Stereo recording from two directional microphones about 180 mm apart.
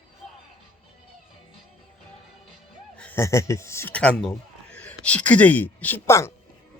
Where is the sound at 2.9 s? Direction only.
10° left (ahead or behind).